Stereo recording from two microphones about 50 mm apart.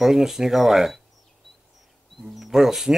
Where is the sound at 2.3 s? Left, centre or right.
Centre.